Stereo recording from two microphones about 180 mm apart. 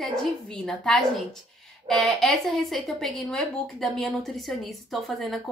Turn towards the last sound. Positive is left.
turn(degrees=0)  # may be behind; listen again after turning